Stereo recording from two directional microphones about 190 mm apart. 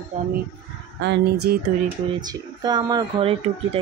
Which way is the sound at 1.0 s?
70° right (ahead or behind).